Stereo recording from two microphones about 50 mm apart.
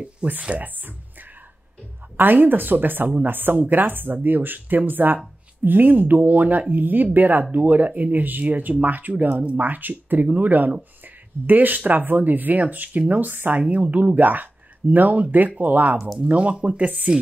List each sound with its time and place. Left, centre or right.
0.2 s speech: right
0.6 s speech: right
2.1 s speech: right
16.3 s speech: right